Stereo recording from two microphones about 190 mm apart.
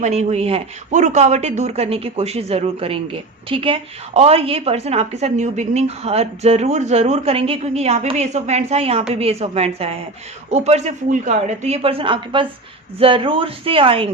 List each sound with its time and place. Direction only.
0.0 s a man's voice: 35° right (ahead or behind)